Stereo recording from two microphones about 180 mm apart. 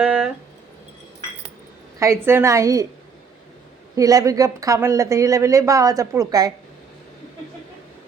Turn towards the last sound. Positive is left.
turn(degrees=-20)  # may be behind; listen again after turning